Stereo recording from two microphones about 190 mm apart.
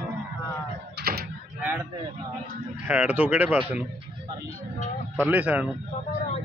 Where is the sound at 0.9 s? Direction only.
55° right (ahead or behind).